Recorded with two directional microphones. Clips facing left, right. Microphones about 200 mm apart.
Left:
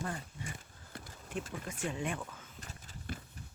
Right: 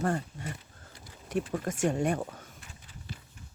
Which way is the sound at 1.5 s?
45° right (ahead or behind).